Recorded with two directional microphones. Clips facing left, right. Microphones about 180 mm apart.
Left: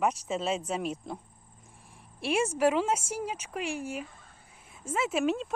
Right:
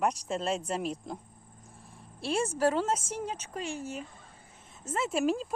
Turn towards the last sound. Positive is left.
turn(degrees=0)  # may be behind; listen again after turning